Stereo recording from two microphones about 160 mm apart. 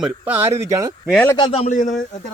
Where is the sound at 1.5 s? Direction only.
45° left (ahead or behind).